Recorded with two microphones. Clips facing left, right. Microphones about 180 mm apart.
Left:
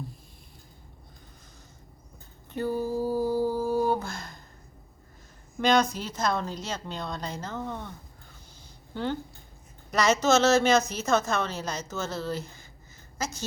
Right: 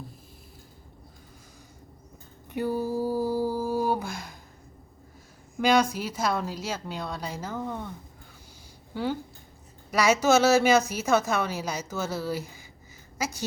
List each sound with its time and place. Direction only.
2.5 s a sound: 10° right (ahead or behind)
5.5 s a woman's voice: 10° right (ahead or behind)
8.9 s a woman's voice: 10° right (ahead or behind)